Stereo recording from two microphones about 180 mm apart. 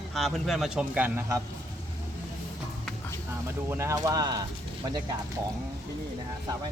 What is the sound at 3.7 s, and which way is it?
Speech, 15° right (ahead or behind).